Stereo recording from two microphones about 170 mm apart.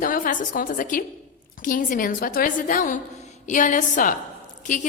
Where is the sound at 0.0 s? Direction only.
50° left (ahead or behind).